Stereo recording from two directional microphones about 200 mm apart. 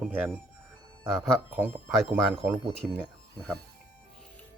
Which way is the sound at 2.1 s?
10° right (ahead or behind).